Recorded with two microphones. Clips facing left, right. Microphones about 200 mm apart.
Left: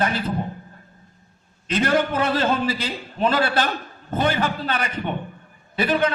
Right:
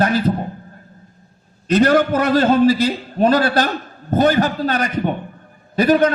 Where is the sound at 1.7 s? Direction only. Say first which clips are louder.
Right 7 dB; 40° right (ahead or behind).